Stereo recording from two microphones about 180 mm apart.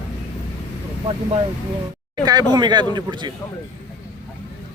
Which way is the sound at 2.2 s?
20° right (ahead or behind).